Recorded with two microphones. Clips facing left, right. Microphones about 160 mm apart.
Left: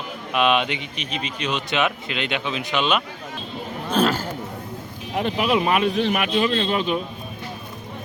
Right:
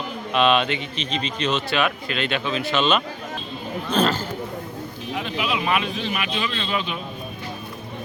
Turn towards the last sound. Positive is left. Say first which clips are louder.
# left 5 dB
turn(degrees=45)  # may be behind; listen again after turning